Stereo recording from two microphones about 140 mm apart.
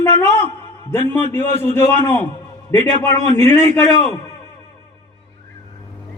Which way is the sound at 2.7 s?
15° left (ahead or behind).